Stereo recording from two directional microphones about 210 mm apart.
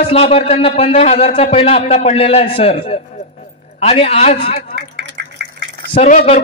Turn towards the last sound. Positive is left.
turn(degrees=35)  # may be behind; listen again after turning